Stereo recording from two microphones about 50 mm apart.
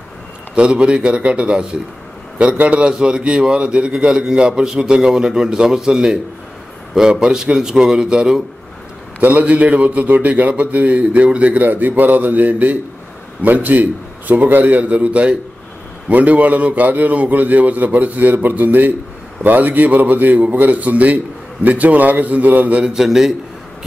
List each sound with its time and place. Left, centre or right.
0.6 s a man's voice: centre
9.2 s a man's voice: right
22.9 s a man's voice: centre